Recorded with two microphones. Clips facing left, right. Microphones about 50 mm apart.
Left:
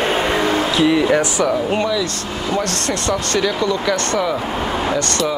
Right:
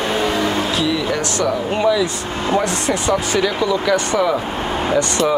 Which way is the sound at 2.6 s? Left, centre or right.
Centre.